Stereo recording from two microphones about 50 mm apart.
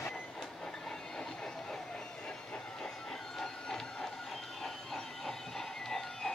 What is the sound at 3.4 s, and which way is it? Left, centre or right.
Printer, centre.